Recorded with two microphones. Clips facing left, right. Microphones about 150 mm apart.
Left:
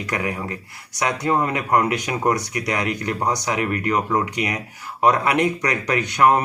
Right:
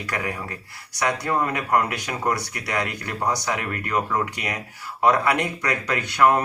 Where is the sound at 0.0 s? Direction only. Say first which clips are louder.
Left 3 dB; 20° left (ahead or behind).